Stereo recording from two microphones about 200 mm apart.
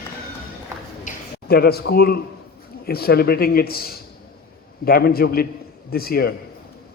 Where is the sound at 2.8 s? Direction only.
50° left (ahead or behind).